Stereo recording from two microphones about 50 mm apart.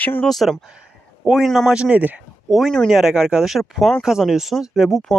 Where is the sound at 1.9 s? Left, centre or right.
Right.